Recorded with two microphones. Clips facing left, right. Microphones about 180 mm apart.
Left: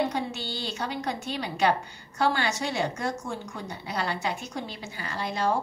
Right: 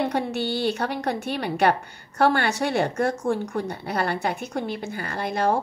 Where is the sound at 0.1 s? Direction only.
60° right (ahead or behind).